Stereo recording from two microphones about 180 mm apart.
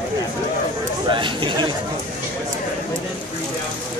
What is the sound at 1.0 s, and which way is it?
Speech, 25° right (ahead or behind).